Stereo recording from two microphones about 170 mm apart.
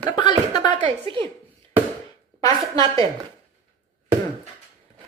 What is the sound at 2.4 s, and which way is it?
Speech, 20° left (ahead or behind).